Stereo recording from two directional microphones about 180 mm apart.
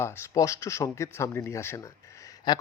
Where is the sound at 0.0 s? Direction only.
15° left (ahead or behind).